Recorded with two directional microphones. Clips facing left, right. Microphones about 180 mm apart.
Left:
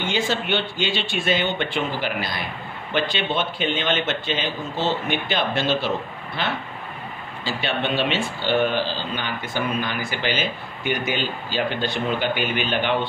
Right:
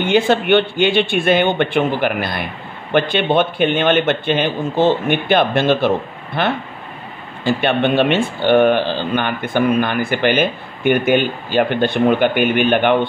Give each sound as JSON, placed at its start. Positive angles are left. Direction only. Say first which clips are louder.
{"t": 0.0, "sound": "speech", "louder": "right 9 dB", "side_deg": -60}